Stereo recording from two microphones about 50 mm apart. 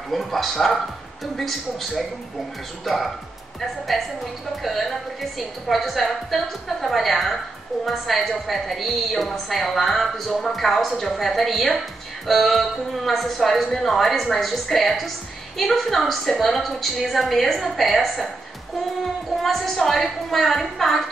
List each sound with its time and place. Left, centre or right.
0.1 s speech: centre
19.3 s speech: centre